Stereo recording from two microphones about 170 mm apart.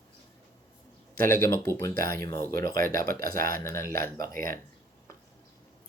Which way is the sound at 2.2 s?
20° left (ahead or behind).